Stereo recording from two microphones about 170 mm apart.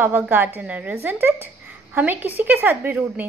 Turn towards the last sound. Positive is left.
turn(degrees=-10)  # may be behind; listen again after turning